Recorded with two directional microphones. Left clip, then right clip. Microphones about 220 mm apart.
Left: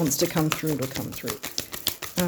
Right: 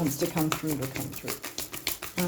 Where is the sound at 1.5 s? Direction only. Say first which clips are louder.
Left 4 dB; 30° left (ahead or behind).